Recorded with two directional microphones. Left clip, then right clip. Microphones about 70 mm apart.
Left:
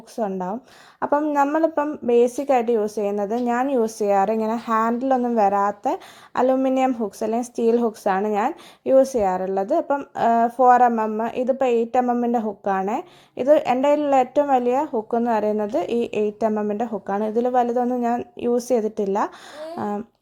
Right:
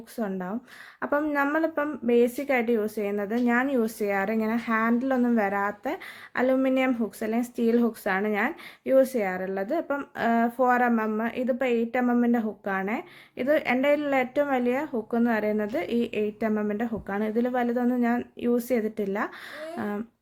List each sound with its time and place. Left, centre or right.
0.2 s speech: left
1.0 s speech: left
5.4 s speech: left
10.9 s speech: left
11.2 s speech: left
12.0 s speech: left
12.3 s speech: left
15.5 s speech: left
15.8 s a woman's voice: left
16.5 s speech: left
16.7 s a woman's voice: left